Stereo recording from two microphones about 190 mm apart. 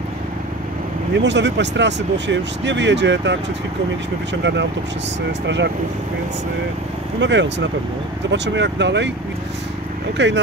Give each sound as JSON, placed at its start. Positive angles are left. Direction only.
{"t": 1.1, "sound": "speech", "side_deg": -70}
{"t": 7.2, "sound": "speech", "side_deg": -70}
{"t": 10.1, "sound": "speech", "side_deg": -70}